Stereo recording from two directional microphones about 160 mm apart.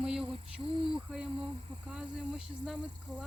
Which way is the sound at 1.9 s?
5° right (ahead or behind).